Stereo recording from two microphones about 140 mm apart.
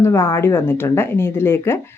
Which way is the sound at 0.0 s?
20° left (ahead or behind).